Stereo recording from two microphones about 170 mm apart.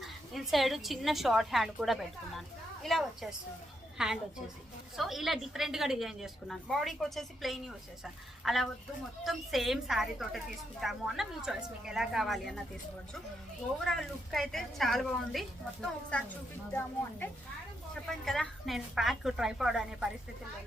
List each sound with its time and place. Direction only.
0.0 s a woman's voice: centre (ahead or behind)
13.8 s a woman's voice: centre (ahead or behind)
18.3 s a woman's voice: centre (ahead or behind)